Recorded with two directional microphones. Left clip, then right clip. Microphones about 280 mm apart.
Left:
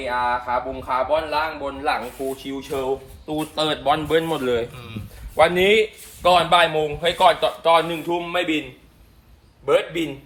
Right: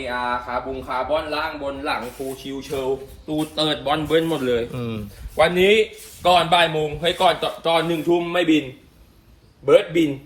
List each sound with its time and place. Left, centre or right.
0.1 s speech: left
4.7 s speech: centre
5.4 s speech: left
9.6 s speech: left